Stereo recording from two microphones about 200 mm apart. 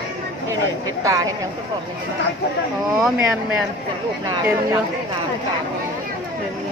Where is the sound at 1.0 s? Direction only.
15° right (ahead or behind).